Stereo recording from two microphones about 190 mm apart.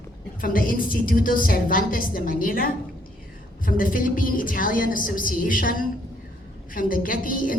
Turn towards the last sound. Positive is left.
turn(degrees=45)  # may be behind; listen again after turning